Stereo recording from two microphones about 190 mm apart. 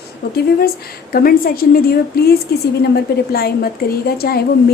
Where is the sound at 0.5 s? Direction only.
50° left (ahead or behind).